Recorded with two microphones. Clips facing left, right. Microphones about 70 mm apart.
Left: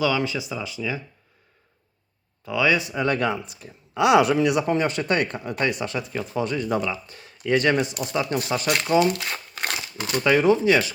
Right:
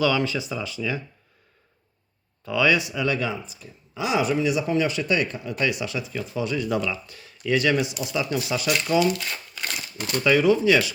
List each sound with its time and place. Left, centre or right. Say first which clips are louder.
0.0 s speech: right 1 dB; centre
2.5 s speech: even; left
3.2 s speech: left 4 dB; left
6.7 s speech: left 1 dB; left
9.3 s crumpling: left 3 dB; left
9.7 s a sound: left 2 dB; left
10.2 s speech: even; left